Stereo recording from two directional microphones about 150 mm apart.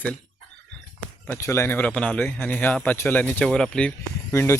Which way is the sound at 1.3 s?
20° left (ahead or behind).